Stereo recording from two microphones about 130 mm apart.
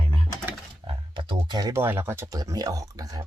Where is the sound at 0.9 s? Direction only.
40° right (ahead or behind).